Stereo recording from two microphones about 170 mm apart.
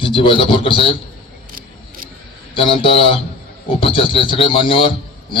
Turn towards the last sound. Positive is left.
turn(degrees=30)  # may be behind; listen again after turning